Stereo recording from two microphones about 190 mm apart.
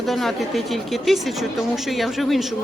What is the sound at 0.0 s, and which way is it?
Speech, centre (ahead or behind).